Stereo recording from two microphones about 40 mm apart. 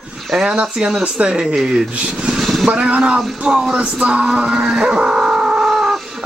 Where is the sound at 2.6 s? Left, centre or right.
Right.